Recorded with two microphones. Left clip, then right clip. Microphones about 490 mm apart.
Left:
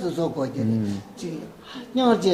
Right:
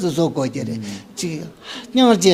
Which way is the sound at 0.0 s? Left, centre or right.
Right.